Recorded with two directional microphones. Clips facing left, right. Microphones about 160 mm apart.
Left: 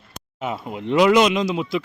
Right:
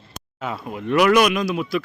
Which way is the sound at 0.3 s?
20° left (ahead or behind).